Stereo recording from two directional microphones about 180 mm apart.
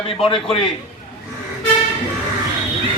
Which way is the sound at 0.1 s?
30° left (ahead or behind).